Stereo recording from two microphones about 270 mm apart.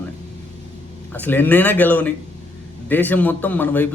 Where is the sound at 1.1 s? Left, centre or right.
Centre.